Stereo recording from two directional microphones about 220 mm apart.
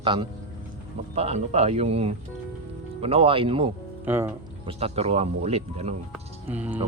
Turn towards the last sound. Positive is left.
turn(degrees=-5)  # may be behind; listen again after turning